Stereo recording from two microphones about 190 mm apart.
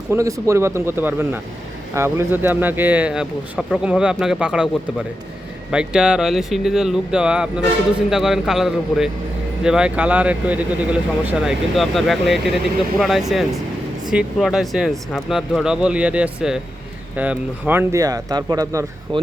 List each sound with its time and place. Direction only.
0.1 s speech: 15° right (ahead or behind)